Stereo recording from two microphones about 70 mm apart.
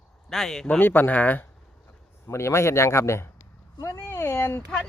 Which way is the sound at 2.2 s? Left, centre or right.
Left.